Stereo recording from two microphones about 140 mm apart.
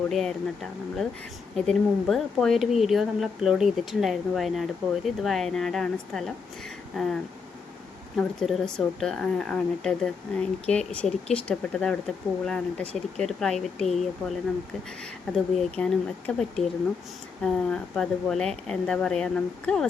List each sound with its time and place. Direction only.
0.1 s speech: centre (ahead or behind)
15.5 s speech: 5° left (ahead or behind)